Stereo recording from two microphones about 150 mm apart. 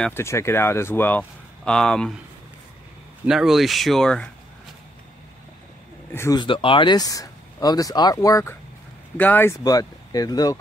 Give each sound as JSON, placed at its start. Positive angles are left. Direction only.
{"t": 0.1, "sound": "speech", "side_deg": 20}
{"t": 3.3, "sound": "speech", "side_deg": 0}
{"t": 6.1, "sound": "speech", "side_deg": 20}
{"t": 6.4, "sound": "speech", "side_deg": 35}
{"t": 9.1, "sound": "speech", "side_deg": 10}
{"t": 9.6, "sound": "speech", "side_deg": 25}